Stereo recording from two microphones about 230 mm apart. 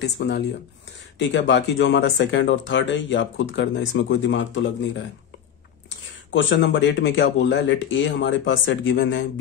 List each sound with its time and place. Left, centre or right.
0.0 s speech: left
5.9 s speech: left